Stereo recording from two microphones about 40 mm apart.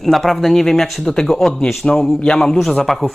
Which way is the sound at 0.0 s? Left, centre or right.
Centre.